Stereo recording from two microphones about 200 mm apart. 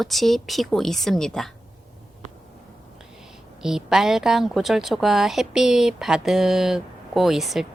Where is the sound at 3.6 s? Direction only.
5° right (ahead or behind).